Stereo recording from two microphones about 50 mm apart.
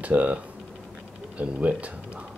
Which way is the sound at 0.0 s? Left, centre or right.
Right.